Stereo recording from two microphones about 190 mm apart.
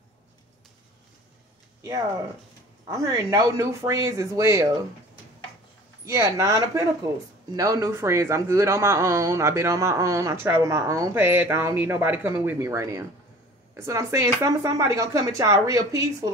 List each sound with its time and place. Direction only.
2.9 s speech: 15° right (ahead or behind)
6.0 s speech: 15° right (ahead or behind)